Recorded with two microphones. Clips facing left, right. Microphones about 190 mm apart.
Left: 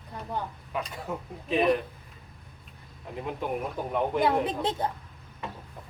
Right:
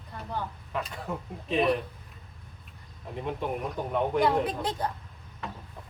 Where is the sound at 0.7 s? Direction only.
Centre (ahead or behind).